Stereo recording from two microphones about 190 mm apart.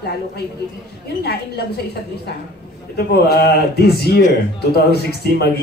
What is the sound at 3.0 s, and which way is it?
A woman's voice, 55° left (ahead or behind).